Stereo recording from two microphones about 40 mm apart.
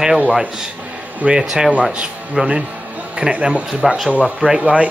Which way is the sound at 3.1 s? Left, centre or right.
Right.